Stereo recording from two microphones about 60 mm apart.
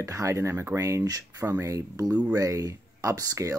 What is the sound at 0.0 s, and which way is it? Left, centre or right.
Speech, right.